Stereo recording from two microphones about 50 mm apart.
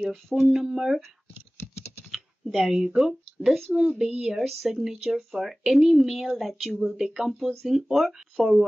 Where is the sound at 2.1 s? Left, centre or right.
Centre.